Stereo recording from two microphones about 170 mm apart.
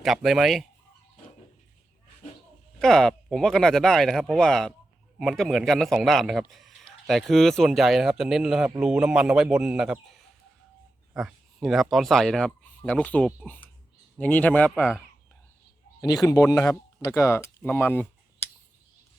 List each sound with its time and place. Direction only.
0.0 s speech: centre (ahead or behind)
2.7 s a man's voice: 5° left (ahead or behind)
14.8 s speech: 5° right (ahead or behind)
16.0 s a man's voice: 20° left (ahead or behind)